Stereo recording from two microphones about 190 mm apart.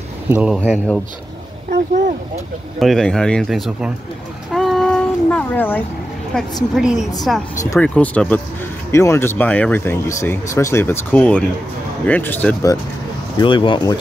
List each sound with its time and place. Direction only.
0.3 s speech: 5° right (ahead or behind)
1.7 s speech: 55° right (ahead or behind)
2.8 s speech: centre (ahead or behind)
4.5 s a sound: centre (ahead or behind)
6.3 s speech: 5° left (ahead or behind)
13.4 s speech: 25° left (ahead or behind)